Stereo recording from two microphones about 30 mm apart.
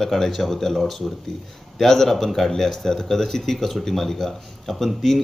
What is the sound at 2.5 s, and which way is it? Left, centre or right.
Speech, centre.